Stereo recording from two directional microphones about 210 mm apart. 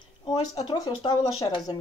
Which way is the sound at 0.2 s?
25° left (ahead or behind).